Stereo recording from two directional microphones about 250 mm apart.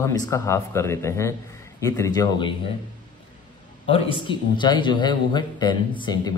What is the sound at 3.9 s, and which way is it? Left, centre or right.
Speech, left.